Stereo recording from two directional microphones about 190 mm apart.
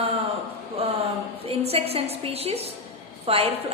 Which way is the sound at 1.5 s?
30° right (ahead or behind).